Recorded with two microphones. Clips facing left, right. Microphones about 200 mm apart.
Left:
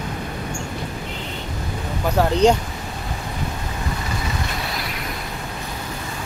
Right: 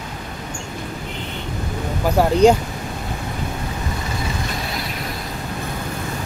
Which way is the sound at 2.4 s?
10° right (ahead or behind).